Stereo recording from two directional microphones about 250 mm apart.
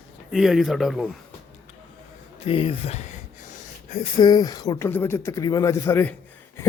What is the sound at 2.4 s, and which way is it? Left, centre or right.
Speech, left.